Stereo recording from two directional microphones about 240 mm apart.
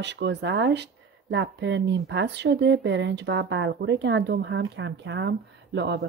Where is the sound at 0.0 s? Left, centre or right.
Right.